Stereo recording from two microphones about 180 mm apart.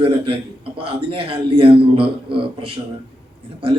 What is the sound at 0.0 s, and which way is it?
A man's voice, 30° right (ahead or behind).